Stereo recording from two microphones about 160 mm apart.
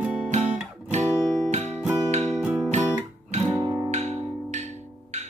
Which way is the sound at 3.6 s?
30° right (ahead or behind).